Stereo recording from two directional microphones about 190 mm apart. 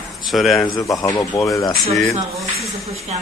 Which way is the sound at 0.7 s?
15° left (ahead or behind).